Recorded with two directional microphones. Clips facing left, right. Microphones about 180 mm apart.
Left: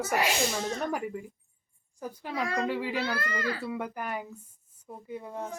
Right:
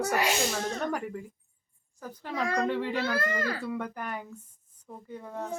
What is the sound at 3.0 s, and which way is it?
Speech, 45° right (ahead or behind).